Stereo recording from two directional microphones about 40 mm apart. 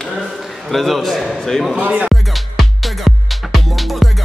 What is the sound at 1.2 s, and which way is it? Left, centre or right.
Speech, centre.